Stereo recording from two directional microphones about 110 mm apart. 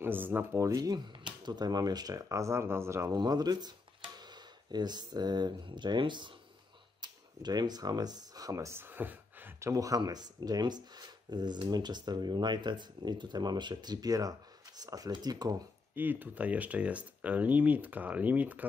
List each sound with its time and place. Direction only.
0.0 s speech: 20° right (ahead or behind)
3.2 s speech: 35° right (ahead or behind)
15.9 s speech: 20° right (ahead or behind)